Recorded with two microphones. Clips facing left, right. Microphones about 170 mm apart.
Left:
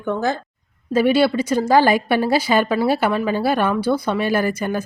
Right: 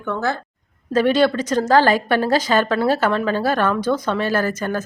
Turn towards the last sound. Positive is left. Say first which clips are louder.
# left 1 dB
turn(degrees=10)  # may be behind; listen again after turning